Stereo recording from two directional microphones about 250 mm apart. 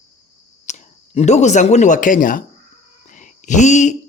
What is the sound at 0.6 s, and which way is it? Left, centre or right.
Speech, left.